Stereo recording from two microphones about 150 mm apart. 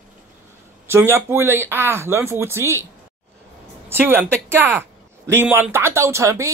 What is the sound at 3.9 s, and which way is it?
Speech, 15° right (ahead or behind).